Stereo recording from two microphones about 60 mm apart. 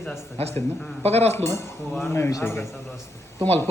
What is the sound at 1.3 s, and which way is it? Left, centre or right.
A man's voice, left.